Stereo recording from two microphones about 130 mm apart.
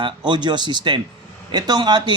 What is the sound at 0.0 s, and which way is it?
A man's voice, 35° right (ahead or behind).